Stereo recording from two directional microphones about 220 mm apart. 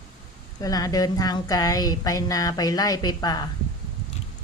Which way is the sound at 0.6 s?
15° left (ahead or behind).